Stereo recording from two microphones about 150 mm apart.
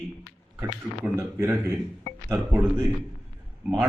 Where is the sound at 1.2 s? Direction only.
15° right (ahead or behind).